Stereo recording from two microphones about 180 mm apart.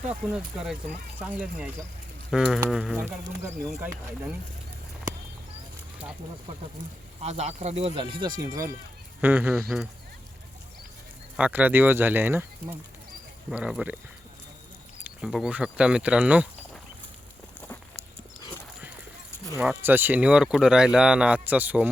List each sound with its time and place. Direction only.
0.1 s speech: 5° right (ahead or behind)
7.2 s speech: 40° right (ahead or behind)
8.2 s speech: 20° right (ahead or behind)
11.3 s speech: 10° right (ahead or behind)
13.5 s speech: 5° right (ahead or behind)
15.0 s speech: 5° right (ahead or behind)
18.3 s clip-clop: 20° left (ahead or behind)
19.5 s speech: 10° right (ahead or behind)